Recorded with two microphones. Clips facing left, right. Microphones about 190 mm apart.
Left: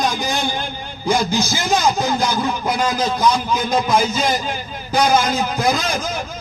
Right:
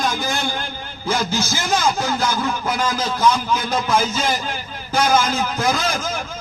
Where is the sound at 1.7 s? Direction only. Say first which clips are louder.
Left 2 dB; 15° left (ahead or behind).